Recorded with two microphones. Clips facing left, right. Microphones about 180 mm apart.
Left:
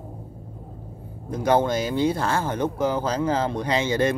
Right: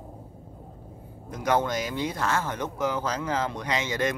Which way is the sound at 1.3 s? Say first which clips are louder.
Left 5 dB; 30° left (ahead or behind).